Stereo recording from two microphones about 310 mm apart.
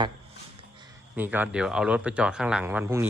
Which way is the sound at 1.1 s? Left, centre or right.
Centre.